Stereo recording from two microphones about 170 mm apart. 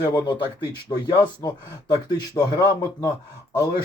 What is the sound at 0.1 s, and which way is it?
A man's voice, 25° left (ahead or behind).